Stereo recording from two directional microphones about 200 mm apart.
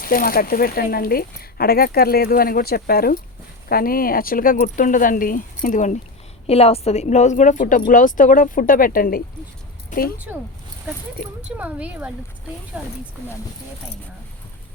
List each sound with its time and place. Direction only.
0.0 s a woman's voice: 45° left (ahead or behind)
11.4 s speech: 5° right (ahead or behind)